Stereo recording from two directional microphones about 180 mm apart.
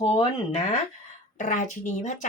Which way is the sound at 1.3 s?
45° left (ahead or behind).